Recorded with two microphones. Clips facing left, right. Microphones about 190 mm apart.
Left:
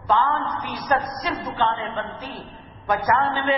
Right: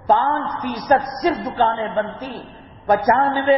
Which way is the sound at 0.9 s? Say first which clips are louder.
Right 7 dB; 40° right (ahead or behind).